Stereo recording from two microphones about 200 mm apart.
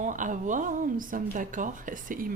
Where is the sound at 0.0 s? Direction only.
40° right (ahead or behind).